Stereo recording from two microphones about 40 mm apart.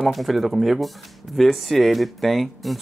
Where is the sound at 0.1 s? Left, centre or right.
Centre.